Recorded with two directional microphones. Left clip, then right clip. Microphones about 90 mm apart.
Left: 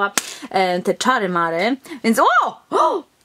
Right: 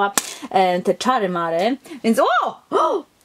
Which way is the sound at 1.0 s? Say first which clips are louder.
Left 2 dB; 35° left (ahead or behind).